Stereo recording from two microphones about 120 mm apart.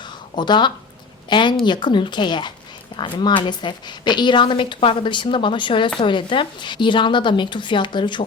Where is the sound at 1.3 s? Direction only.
40° left (ahead or behind).